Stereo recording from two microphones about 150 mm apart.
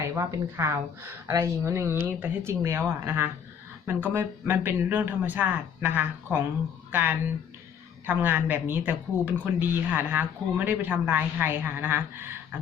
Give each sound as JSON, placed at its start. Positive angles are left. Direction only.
{"t": 0.1, "sound": "a woman's voice", "side_deg": -20}